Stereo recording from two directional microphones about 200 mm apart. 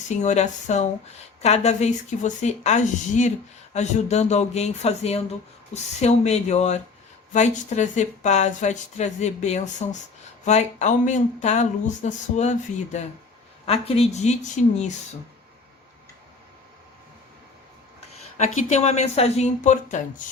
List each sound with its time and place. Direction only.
0.2 s speech: 35° left (ahead or behind)
18.3 s speech: 35° left (ahead or behind)